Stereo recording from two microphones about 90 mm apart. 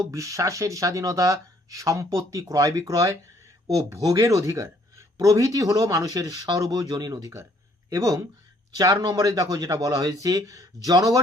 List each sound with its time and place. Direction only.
0.0 s speech: 35° right (ahead or behind)